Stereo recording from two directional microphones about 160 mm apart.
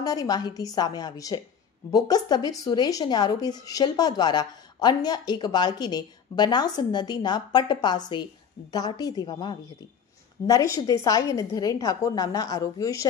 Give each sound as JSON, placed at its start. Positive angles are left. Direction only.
{"t": 0.0, "sound": "speech", "side_deg": 25}